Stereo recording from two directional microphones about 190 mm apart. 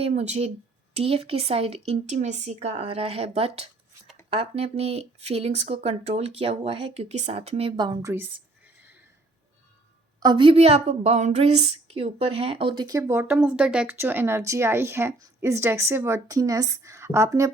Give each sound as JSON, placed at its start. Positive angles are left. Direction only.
{"t": 0.0, "sound": "speech", "side_deg": -35}
{"t": 10.2, "sound": "a woman's voice", "side_deg": -25}